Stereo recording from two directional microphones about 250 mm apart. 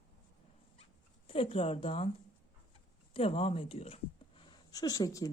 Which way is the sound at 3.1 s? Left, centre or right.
Left.